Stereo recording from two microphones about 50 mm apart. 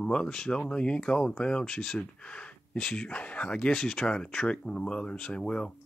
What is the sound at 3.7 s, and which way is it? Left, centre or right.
Speech, centre.